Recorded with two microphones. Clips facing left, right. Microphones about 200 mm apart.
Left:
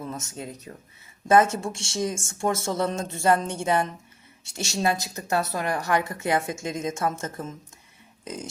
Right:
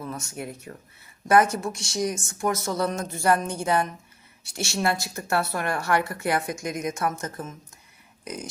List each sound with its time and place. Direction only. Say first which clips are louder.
0.0 s speech: right 1 dB; 20° left (ahead or behind)